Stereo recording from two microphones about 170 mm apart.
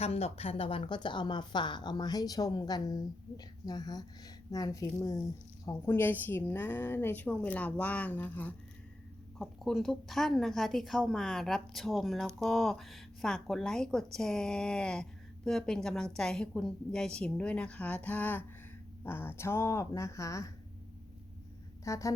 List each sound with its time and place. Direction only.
0.0 s a woman's voice: 35° left (ahead or behind); by 20.5 s 20° left (ahead or behind)
21.8 s a woman's voice: 20° left (ahead or behind)